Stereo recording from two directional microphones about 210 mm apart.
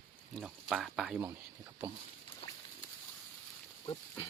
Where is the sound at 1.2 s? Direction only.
15° right (ahead or behind).